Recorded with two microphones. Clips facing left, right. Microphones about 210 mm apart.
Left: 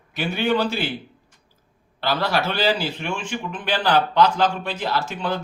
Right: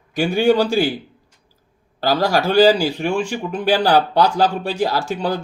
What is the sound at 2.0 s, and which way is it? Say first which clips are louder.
Speech: right 5 dB; 40° right (ahead or behind).